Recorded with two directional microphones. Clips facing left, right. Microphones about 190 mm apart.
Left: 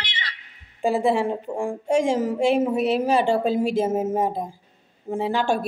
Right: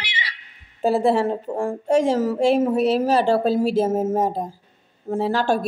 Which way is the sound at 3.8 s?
5° right (ahead or behind).